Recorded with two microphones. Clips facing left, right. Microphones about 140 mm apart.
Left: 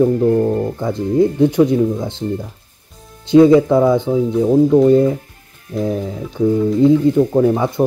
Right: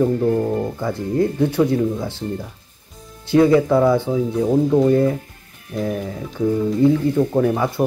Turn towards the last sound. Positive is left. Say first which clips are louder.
# left 4 dB
turn(degrees=20)  # may be behind; listen again after turning